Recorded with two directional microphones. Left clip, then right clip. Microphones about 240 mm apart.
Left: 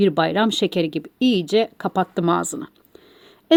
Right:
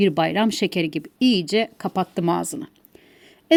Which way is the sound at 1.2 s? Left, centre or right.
Right.